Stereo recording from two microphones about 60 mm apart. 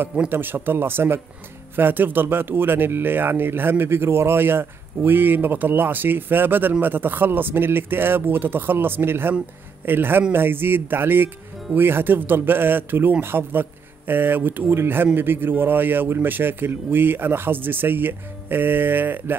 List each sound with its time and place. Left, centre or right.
0.3 s speech: right